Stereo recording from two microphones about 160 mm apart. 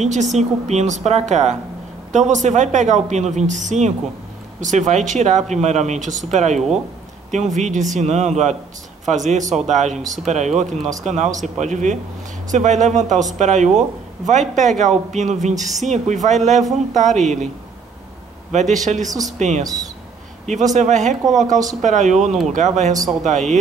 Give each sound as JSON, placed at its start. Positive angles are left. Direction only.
{"t": 0.0, "sound": "speech", "side_deg": -45}
{"t": 18.5, "sound": "speech", "side_deg": -45}
{"t": 20.7, "sound": "speech", "side_deg": -50}